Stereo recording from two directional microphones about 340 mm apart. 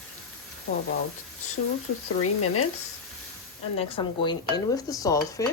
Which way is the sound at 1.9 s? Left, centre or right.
Left.